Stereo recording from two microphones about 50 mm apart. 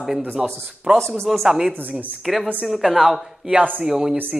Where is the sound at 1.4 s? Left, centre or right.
Centre.